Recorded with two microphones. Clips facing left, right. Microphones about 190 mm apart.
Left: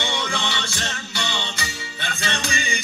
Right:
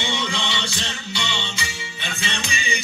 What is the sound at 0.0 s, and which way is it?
Music, 55° left (ahead or behind).